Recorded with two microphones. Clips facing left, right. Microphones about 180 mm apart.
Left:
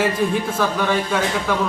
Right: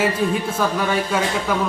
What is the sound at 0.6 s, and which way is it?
Speech, 5° right (ahead or behind).